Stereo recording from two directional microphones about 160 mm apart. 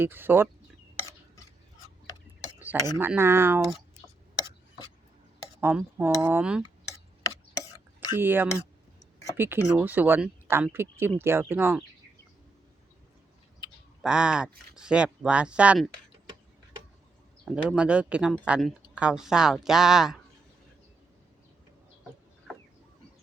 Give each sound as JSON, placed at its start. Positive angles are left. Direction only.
{"t": 0.0, "sound": "speech", "side_deg": -10}
{"t": 2.6, "sound": "tick-tock", "side_deg": -10}
{"t": 3.0, "sound": "speech", "side_deg": -15}
{"t": 5.5, "sound": "speech", "side_deg": -10}
{"t": 7.5, "sound": "whispering", "side_deg": 20}
{"t": 8.2, "sound": "speech", "side_deg": -15}
{"t": 14.0, "sound": "speech", "side_deg": -5}
{"t": 17.4, "sound": "speech", "side_deg": -5}